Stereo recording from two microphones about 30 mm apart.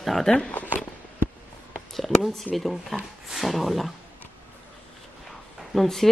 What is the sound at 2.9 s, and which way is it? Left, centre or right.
Speech, centre.